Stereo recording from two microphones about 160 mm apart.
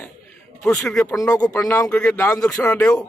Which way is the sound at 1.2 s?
20° left (ahead or behind).